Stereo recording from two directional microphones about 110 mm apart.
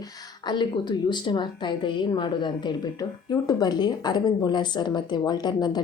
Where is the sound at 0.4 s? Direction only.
45° left (ahead or behind).